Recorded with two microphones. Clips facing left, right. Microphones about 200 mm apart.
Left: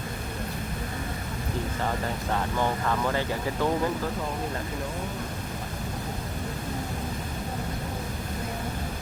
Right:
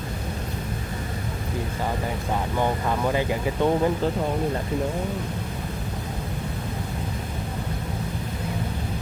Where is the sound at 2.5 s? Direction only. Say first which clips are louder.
Right 4 dB; 15° right (ahead or behind).